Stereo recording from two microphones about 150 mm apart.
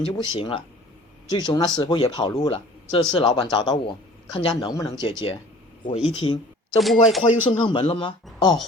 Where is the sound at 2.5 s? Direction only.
40° left (ahead or behind).